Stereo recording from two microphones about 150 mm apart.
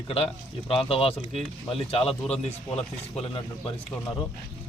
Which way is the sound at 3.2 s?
35° left (ahead or behind).